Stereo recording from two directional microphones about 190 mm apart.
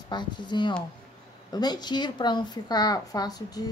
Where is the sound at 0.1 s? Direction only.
25° left (ahead or behind).